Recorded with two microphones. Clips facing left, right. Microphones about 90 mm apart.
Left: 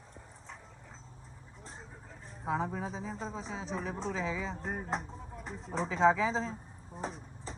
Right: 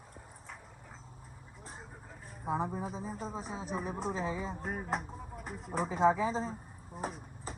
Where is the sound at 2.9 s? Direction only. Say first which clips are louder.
Even; 50° right (ahead or behind).